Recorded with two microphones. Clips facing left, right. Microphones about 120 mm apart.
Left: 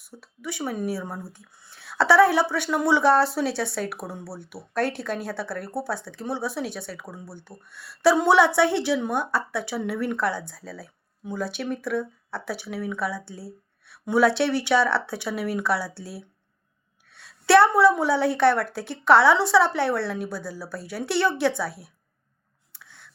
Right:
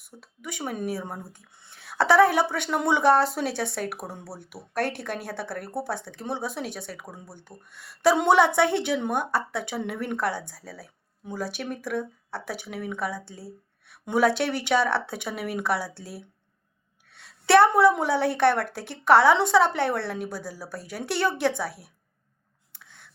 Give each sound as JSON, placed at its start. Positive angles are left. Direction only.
{"t": 0.0, "sound": "speech", "side_deg": -50}
{"t": 1.9, "sound": "speech", "side_deg": -50}
{"t": 7.3, "sound": "speech", "side_deg": -15}
{"t": 7.7, "sound": "speech", "side_deg": -50}
{"t": 11.3, "sound": "speech", "side_deg": -45}
{"t": 17.1, "sound": "a sound", "side_deg": -55}
{"t": 18.0, "sound": "speech", "side_deg": -55}
{"t": 22.7, "sound": "a sound", "side_deg": -50}